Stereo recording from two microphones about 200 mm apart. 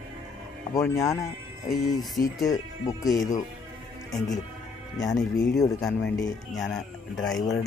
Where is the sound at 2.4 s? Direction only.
15° left (ahead or behind).